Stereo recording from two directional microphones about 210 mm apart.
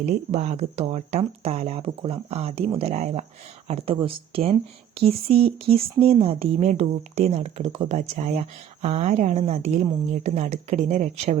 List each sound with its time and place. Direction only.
0.0 s speech: 30° right (ahead or behind)